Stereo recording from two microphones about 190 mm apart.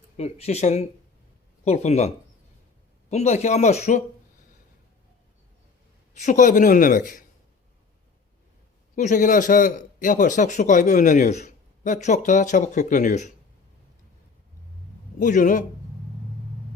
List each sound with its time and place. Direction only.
0.2 s a man's voice: 35° left (ahead or behind)
6.1 s speech: 40° left (ahead or behind)
9.0 s a man's voice: 40° left (ahead or behind)
15.2 s speech: 45° left (ahead or behind)